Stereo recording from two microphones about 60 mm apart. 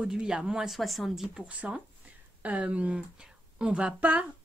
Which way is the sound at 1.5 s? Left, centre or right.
Right.